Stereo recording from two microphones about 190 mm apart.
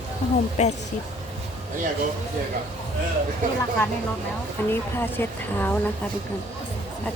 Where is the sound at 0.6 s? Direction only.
35° left (ahead or behind).